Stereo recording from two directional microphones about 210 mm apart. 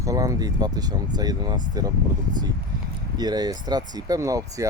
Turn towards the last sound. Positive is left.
turn(degrees=-15)  # may be behind; listen again after turning